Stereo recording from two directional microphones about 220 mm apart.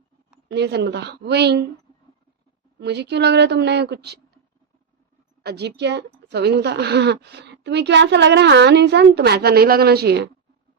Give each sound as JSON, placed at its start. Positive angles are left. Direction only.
{"t": 0.4, "sound": "a woman's voice", "side_deg": -50}
{"t": 2.7, "sound": "a woman's voice", "side_deg": -50}
{"t": 5.4, "sound": "a woman's voice", "side_deg": -45}